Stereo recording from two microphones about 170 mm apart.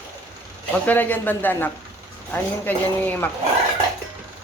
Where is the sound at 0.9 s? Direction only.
10° left (ahead or behind).